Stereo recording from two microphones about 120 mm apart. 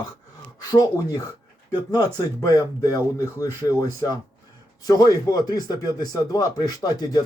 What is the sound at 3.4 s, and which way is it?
Speech, 30° left (ahead or behind).